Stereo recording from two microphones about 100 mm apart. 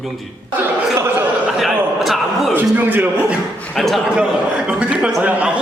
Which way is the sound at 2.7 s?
20° right (ahead or behind).